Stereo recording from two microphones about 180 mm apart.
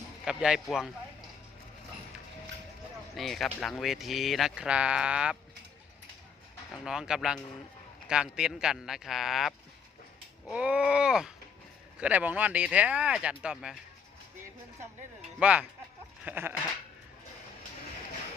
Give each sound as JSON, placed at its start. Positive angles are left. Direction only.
{"t": 0.3, "sound": "speech", "side_deg": -5}
{"t": 3.2, "sound": "speech", "side_deg": 0}
{"t": 6.8, "sound": "speech", "side_deg": -5}
{"t": 15.4, "sound": "speech", "side_deg": -5}